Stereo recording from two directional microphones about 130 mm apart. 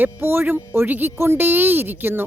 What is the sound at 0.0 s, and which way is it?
Speech, 15° right (ahead or behind).